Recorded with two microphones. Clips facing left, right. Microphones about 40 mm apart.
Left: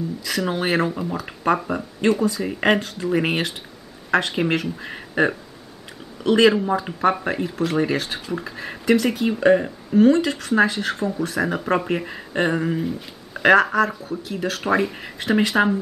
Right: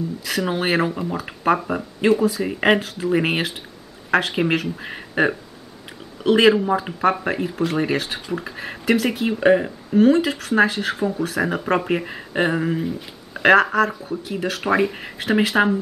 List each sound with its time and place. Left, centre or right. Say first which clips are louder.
0.2 s speech: right 1 dB; centre